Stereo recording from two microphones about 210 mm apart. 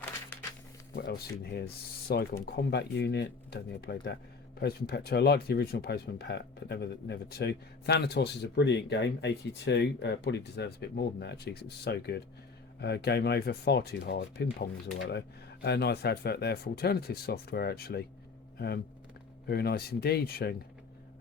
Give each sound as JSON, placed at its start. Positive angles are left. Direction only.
{"t": 0.9, "sound": "speech", "side_deg": 45}
{"t": 19.5, "sound": "speech", "side_deg": 50}